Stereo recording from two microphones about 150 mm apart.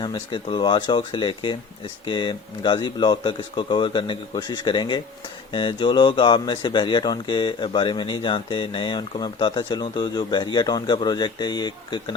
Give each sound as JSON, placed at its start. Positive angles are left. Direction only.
{"t": 0.0, "sound": "speech", "side_deg": 30}